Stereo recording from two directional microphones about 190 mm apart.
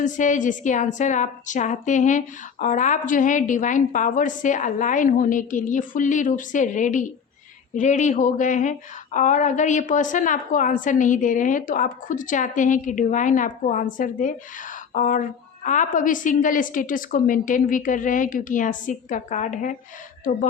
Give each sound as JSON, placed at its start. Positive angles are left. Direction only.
{"t": 0.0, "sound": "a woman's voice", "side_deg": 40}